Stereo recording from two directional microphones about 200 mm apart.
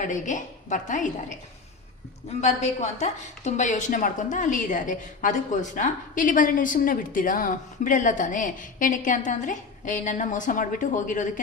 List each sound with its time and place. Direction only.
0.0 s a woman's voice: 40° left (ahead or behind)
2.4 s a woman's voice: 35° left (ahead or behind)